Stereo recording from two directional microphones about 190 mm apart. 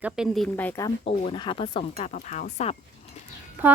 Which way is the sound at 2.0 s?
45° left (ahead or behind).